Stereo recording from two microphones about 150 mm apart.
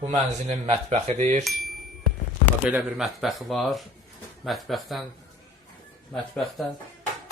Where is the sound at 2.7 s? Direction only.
5° right (ahead or behind).